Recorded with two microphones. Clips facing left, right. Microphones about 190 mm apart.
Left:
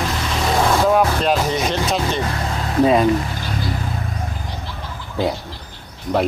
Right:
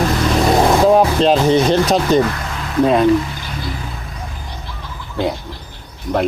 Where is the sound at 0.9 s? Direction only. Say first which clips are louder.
Right 4 dB; 30° right (ahead or behind).